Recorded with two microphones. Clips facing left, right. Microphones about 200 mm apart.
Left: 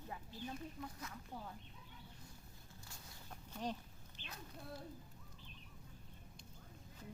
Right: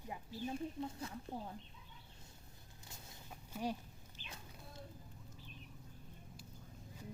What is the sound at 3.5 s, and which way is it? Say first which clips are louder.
Speech: right 3 dB; 10° right (ahead or behind).